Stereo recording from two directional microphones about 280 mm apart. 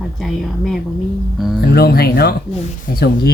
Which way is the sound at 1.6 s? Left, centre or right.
Left.